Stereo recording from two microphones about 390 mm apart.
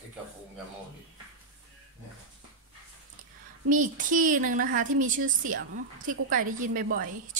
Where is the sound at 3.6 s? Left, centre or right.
Centre.